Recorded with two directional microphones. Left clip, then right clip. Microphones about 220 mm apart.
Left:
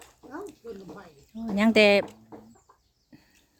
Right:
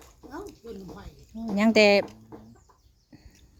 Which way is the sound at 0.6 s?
35° right (ahead or behind).